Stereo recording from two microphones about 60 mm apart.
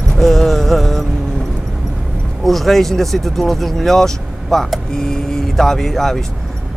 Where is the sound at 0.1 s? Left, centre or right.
Centre.